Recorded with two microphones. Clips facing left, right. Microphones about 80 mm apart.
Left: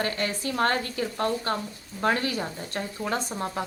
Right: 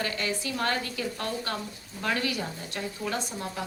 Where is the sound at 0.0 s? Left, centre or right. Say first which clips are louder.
Left 3 dB; left.